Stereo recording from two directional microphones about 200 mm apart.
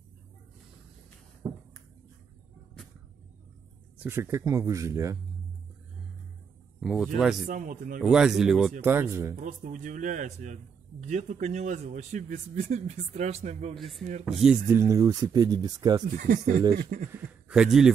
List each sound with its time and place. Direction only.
4.0 s speech: 10° right (ahead or behind)
6.8 s speech: 5° right (ahead or behind)
7.4 s a man's voice: 40° right (ahead or behind)
8.0 s speech: 5° right (ahead or behind)
8.8 s speech: 15° right (ahead or behind)
9.4 s speech: 40° right (ahead or behind)
13.7 s speech: centre (ahead or behind); by 16.0 s 20° right (ahead or behind)
16.2 s speech: 40° right (ahead or behind)
17.1 s a sound: 5° right (ahead or behind)